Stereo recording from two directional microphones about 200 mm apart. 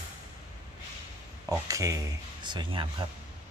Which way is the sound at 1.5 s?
15° right (ahead or behind).